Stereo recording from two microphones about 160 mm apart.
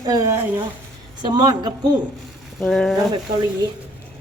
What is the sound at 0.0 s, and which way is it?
A woman's voice, 20° right (ahead or behind).